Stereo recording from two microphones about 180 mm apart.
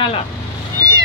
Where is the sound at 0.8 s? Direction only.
20° right (ahead or behind).